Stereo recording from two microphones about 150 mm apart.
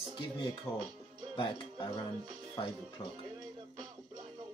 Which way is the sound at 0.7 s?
15° left (ahead or behind).